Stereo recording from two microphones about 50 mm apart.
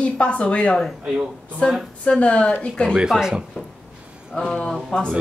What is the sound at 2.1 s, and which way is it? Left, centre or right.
Speech, left.